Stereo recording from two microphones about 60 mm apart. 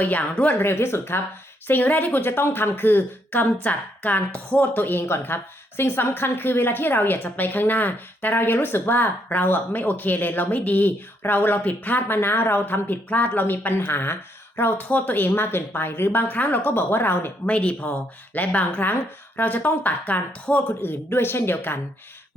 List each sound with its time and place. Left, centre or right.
0.0 s a woman's voice: left
0.6 s a woman's voice: left
17.4 s a woman's voice: left